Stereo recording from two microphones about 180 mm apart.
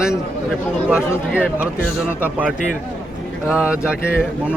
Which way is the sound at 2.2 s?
10° right (ahead or behind).